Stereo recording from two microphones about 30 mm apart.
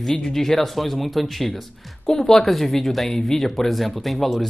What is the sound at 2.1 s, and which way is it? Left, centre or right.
Speech, centre.